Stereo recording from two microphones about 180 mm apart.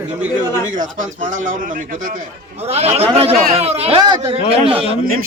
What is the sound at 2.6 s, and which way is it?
A man's voice, 35° right (ahead or behind).